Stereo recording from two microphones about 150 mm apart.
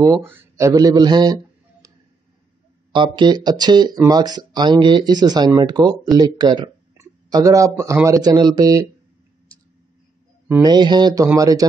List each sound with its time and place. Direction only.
0.0 s speech: 20° right (ahead or behind)
2.9 s speech: 30° right (ahead or behind)
10.6 s speech: 30° right (ahead or behind)